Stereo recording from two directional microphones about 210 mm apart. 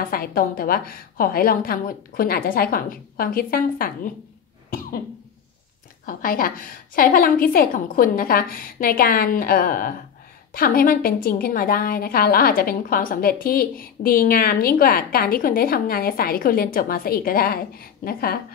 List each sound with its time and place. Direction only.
0.0 s a woman's voice: 45° left (ahead or behind)
6.0 s a woman's voice: 40° left (ahead or behind)